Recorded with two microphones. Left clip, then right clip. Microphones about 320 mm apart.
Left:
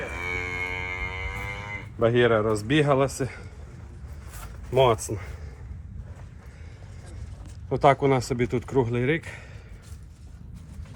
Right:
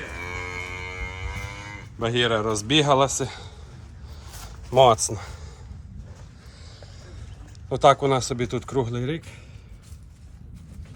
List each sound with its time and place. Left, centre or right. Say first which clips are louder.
0.1 s music: left 2 dB; left
2.0 s speech: left 2 dB; centre
4.7 s speech: right 5 dB; centre
7.7 s speech: right 2 dB; centre